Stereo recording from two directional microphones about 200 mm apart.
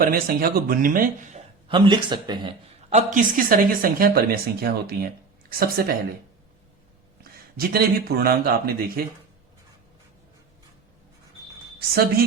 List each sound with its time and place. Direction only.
0.0 s speech: 45° right (ahead or behind)
1.6 s speech: 25° right (ahead or behind)
2.9 s speech: 40° right (ahead or behind)
7.3 s speech: 50° right (ahead or behind)